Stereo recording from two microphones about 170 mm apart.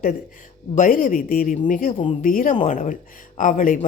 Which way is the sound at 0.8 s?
55° left (ahead or behind).